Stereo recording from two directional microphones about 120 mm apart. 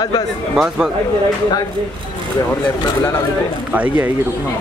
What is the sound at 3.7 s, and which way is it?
Speech, 10° right (ahead or behind).